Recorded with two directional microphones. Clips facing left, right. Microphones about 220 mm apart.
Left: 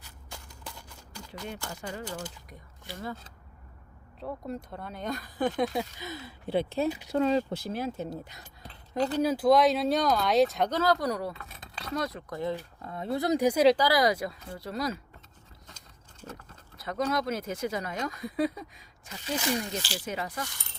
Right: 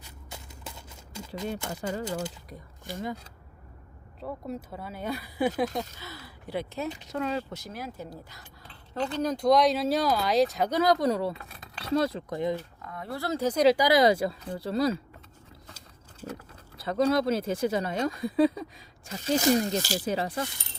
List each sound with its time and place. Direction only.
0.3 s a sound: 20° right (ahead or behind)
1.7 s speech: 35° right (ahead or behind)
4.2 s speech: centre (ahead or behind)
6.0 s speech: 20° left (ahead or behind)
8.6 s a sound: 40° left (ahead or behind)
9.1 s speech: 5° left (ahead or behind)
10.7 s speech: 15° right (ahead or behind)
12.8 s speech: 25° left (ahead or behind)
13.7 s speech: 20° right (ahead or behind)
16.7 s speech: 30° right (ahead or behind)